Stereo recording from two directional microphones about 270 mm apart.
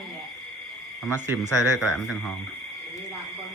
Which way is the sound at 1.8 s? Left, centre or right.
Centre.